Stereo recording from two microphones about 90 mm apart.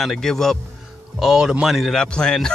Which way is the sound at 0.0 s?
5° left (ahead or behind).